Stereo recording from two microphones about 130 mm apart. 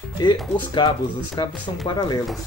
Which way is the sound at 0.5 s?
35° left (ahead or behind).